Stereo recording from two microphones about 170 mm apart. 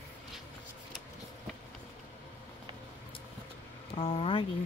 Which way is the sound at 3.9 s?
35° left (ahead or behind).